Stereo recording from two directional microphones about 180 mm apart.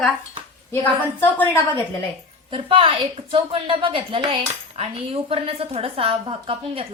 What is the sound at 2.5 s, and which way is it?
A woman's voice, 30° right (ahead or behind).